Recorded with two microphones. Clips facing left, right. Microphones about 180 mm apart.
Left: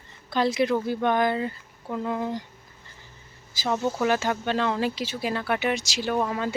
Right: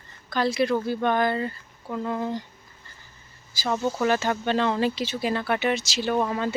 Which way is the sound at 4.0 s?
10° left (ahead or behind).